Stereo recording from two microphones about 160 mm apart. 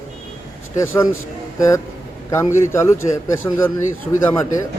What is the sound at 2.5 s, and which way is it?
A man's voice, 15° left (ahead or behind).